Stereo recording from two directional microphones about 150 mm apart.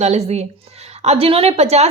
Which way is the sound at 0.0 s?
45° right (ahead or behind).